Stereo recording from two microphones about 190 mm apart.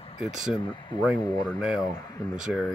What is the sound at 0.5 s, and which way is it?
Speech, 25° left (ahead or behind).